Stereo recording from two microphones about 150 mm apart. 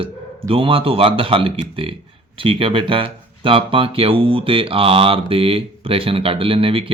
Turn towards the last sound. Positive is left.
turn(degrees=-35)  # may be behind; listen again after turning